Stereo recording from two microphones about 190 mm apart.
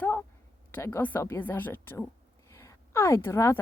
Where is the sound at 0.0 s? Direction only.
10° left (ahead or behind).